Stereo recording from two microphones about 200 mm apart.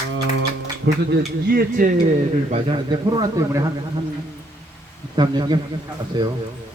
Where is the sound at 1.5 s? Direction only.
45° right (ahead or behind).